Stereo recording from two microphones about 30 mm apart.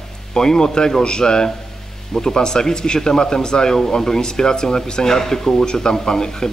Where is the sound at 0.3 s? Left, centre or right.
Left.